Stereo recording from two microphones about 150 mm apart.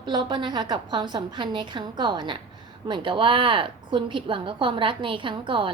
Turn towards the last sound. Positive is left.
turn(degrees=-35)  # may be behind; listen again after turning